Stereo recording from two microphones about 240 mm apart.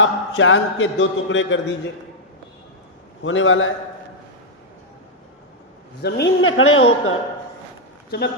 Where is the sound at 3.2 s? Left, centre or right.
Left.